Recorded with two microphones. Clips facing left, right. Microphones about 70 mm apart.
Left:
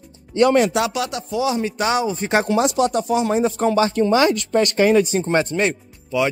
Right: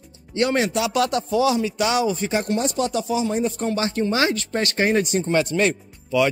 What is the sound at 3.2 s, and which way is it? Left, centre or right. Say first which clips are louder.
Speech: left 5 dB; left.